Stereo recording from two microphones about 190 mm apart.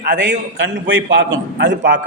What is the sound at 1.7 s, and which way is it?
Speech, 50° right (ahead or behind).